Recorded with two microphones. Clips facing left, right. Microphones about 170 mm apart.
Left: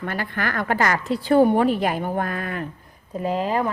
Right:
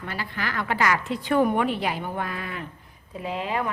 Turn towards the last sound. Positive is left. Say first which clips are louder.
# left 6 dB
turn(degrees=40)  # may be behind; listen again after turning